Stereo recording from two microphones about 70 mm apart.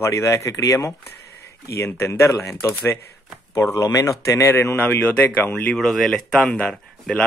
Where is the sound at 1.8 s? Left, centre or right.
Left.